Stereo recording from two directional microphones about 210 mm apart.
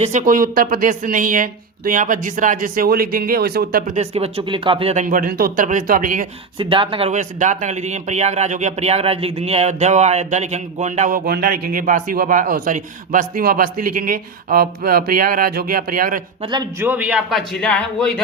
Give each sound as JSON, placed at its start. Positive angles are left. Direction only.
{"t": 0.0, "sound": "speech", "side_deg": -35}
{"t": 6.6, "sound": "speech", "side_deg": -25}
{"t": 16.4, "sound": "a man's voice", "side_deg": -20}
{"t": 16.8, "sound": "a man's voice", "side_deg": -10}